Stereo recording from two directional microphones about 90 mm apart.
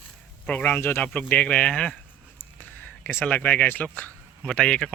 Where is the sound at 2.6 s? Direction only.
25° left (ahead or behind).